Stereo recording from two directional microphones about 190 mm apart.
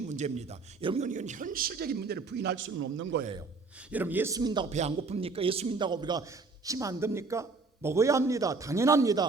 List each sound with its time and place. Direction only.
0.1 s a man's voice: 35° right (ahead or behind); by 3.2 s 90° right
3.9 s a man's voice: 10° right (ahead or behind)
4.7 s a man's voice: 35° right (ahead or behind); by 9.2 s 15° right (ahead or behind)